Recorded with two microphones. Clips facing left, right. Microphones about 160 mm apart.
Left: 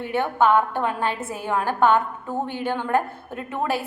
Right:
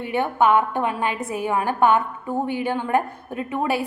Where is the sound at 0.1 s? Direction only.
15° right (ahead or behind).